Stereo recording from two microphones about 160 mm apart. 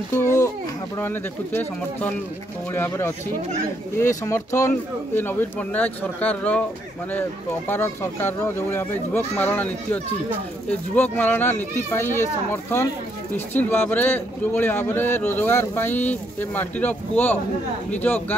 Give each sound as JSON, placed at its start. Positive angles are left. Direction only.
{"t": 0.1, "sound": "speech", "side_deg": 15}